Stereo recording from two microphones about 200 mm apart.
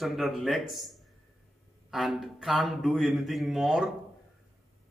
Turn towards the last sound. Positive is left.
turn(degrees=0)  # may be behind; listen again after turning